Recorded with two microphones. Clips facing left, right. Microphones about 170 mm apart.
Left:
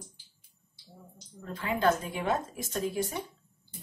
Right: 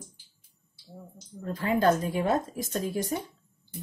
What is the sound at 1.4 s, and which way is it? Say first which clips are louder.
A woman's voice: right 4 dB; 40° right (ahead or behind).